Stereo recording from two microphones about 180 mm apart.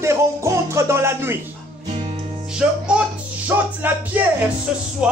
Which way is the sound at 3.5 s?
10° right (ahead or behind).